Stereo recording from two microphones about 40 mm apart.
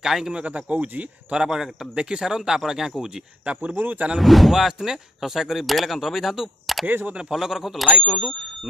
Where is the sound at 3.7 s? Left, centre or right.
Right.